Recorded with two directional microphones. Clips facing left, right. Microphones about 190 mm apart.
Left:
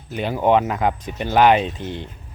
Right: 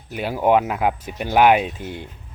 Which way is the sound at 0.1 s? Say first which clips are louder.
Even; 5° right (ahead or behind).